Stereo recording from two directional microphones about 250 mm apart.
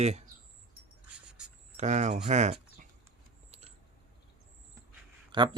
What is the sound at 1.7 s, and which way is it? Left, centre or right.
Speech, right.